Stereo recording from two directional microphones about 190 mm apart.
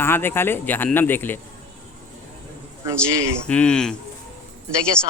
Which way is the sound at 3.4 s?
5° left (ahead or behind).